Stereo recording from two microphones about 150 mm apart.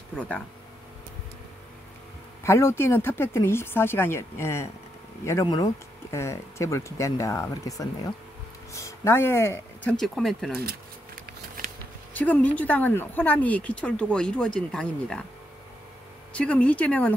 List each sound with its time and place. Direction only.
0.1 s speech: 10° left (ahead or behind)
2.4 s speech: 20° left (ahead or behind)
9.8 s speech: 5° left (ahead or behind)
10.6 s a sound: 75° right (ahead or behind)
12.1 s speech: 10° left (ahead or behind)
16.3 s speech: 10° left (ahead or behind)